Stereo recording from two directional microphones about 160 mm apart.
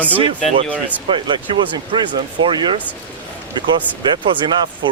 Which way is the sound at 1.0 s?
30° right (ahead or behind).